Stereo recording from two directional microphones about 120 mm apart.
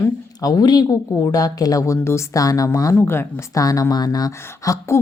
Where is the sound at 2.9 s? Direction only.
20° left (ahead or behind).